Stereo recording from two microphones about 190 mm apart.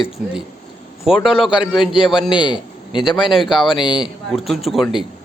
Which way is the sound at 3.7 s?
25° left (ahead or behind).